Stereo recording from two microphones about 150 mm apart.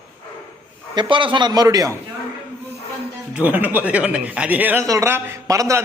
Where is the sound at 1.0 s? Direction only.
35° right (ahead or behind).